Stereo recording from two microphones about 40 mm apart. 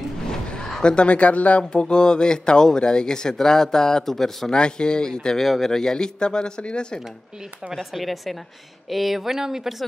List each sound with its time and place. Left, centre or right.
0.3 s a sound: centre; by 1.6 s left
1.6 s speech: left
4.5 s speech: left
5.4 s speech: centre; by 7.0 s left
7.7 s a woman's voice: centre